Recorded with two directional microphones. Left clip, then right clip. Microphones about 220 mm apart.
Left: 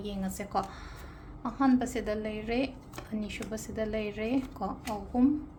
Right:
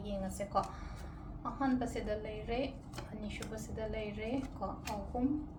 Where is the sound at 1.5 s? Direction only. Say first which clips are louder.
Left 8 dB; 55° left (ahead or behind).